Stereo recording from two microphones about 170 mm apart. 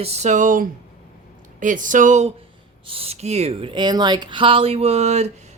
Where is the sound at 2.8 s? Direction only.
35° right (ahead or behind).